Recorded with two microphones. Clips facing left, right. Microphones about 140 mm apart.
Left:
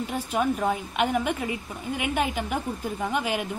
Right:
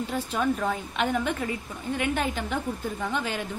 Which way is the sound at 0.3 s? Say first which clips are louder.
Left 3 dB; 10° left (ahead or behind).